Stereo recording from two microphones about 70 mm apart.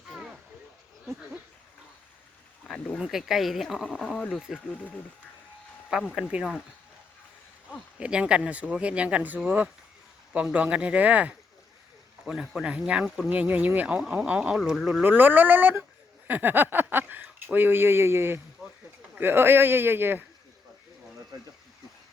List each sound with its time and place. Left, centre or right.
0.1 s a sound: centre
3.0 s speech: centre
3.8 s speech: centre
4.4 s speech: centre
6.1 s speech: centre
7.9 s speech: centre
12.2 s speech: centre
13.1 s speech: centre
13.3 s speech: right
13.8 s speech: centre
15.0 s speech: right
18.6 s a sound: centre
19.2 s speech: right